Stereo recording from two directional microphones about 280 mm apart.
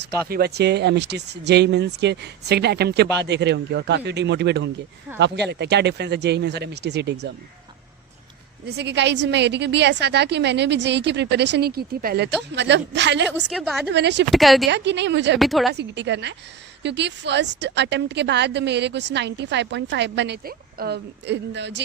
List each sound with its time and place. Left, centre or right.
0.0 s a woman's voice: right
8.6 s a woman's voice: right
13.5 s a woman's voice: centre
13.8 s a woman's voice: right
14.3 s a woman's voice: centre
14.7 s a woman's voice: right
15.4 s a woman's voice: centre
15.7 s a woman's voice: right